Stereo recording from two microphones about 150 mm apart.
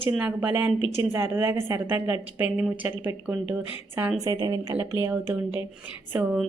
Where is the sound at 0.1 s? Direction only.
10° right (ahead or behind).